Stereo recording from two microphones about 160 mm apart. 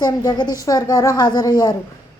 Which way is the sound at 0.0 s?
25° left (ahead or behind).